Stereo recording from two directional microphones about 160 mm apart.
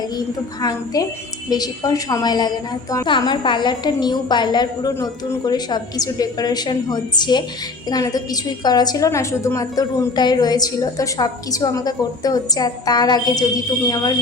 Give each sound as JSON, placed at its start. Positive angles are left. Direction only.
{"t": 0.6, "sound": "a woman's voice", "side_deg": 25}